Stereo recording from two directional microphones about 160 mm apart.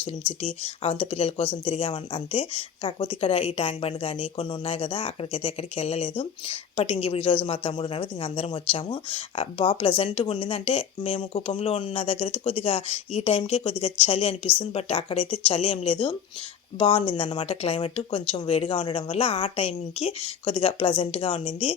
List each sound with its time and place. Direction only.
0.0 s a woman's voice: 35° left (ahead or behind)